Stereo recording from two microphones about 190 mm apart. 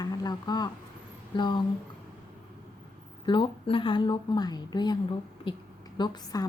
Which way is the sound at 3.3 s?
25° left (ahead or behind).